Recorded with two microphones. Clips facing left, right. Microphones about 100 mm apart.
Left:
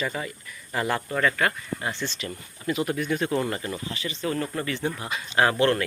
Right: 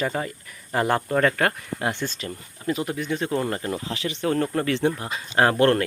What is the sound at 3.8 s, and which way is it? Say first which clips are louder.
Speech: right 4 dB; 90° right.